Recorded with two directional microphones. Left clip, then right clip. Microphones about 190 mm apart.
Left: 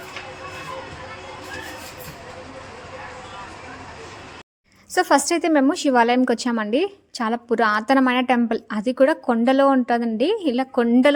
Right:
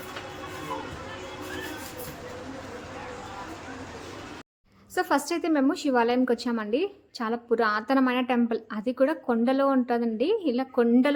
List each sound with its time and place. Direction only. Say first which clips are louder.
4.9 s a woman's voice: left 8 dB; 45° left (ahead or behind)